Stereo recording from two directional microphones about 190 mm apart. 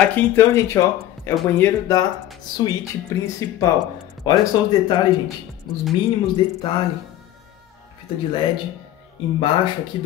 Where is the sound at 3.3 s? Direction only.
15° left (ahead or behind).